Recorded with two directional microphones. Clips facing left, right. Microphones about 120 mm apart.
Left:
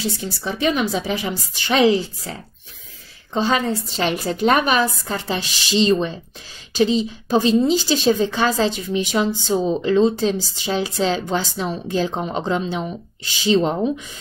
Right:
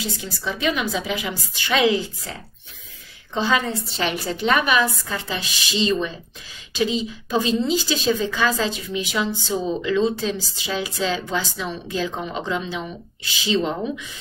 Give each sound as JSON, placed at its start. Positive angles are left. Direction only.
{"t": 0.2, "sound": "a woman's voice", "side_deg": 35}
{"t": 3.3, "sound": "a woman's voice", "side_deg": 35}